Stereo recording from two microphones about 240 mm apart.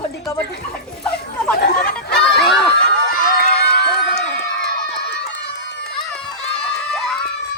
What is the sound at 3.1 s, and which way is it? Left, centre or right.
Crowd, left.